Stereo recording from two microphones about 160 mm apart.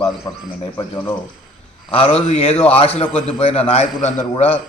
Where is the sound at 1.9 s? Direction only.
40° left (ahead or behind).